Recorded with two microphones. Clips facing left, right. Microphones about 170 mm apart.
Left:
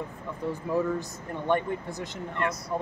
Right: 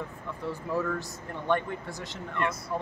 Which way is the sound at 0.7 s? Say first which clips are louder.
Left 3 dB; 20° left (ahead or behind).